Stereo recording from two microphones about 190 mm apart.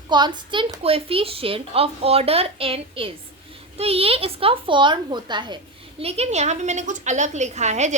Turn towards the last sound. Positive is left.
turn(degrees=-35)  # may be behind; listen again after turning